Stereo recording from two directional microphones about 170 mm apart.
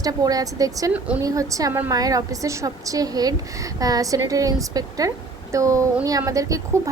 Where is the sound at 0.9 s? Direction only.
10° right (ahead or behind).